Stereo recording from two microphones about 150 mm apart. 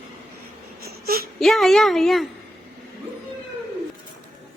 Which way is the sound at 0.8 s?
85° right.